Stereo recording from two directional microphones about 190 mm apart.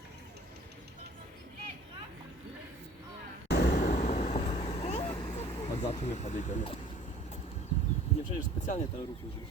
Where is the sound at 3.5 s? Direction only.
60° left (ahead or behind); by 7.6 s 35° left (ahead or behind).